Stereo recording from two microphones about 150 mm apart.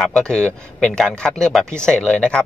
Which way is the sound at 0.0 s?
5° left (ahead or behind).